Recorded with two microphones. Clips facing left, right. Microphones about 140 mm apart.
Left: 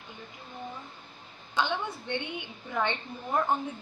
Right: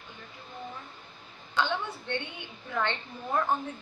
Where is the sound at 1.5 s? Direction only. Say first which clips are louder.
Even; 15° left (ahead or behind).